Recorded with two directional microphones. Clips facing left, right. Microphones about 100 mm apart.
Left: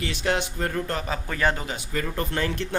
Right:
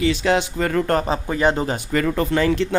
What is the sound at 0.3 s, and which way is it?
Speech, 90° right.